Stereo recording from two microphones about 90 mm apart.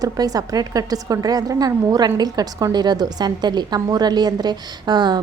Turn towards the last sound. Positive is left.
turn(degrees=-55)  # may be behind; listen again after turning